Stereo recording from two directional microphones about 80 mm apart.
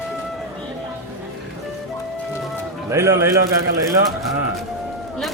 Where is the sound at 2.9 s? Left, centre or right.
Right.